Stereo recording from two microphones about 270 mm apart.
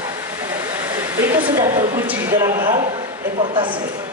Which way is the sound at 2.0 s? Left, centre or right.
Centre.